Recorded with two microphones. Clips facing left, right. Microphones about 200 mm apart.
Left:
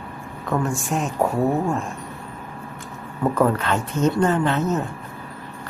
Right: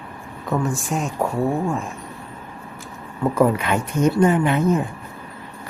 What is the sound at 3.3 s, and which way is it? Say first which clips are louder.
Speech: right 3 dB; 10° right (ahead or behind).